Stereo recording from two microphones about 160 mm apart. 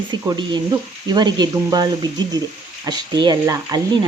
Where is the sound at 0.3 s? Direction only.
30° right (ahead or behind).